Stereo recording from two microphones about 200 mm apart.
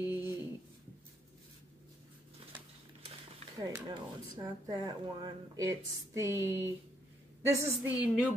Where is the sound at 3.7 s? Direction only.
20° right (ahead or behind).